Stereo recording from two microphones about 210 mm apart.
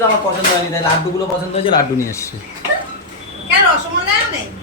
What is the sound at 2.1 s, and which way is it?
Speech, 15° left (ahead or behind).